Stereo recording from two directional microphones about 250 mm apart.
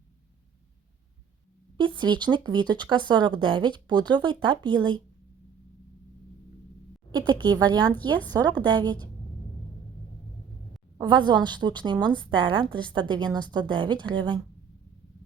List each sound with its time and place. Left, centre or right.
2.0 s a woman's voice: centre
7.1 s a woman's voice: centre
10.9 s a woman's voice: centre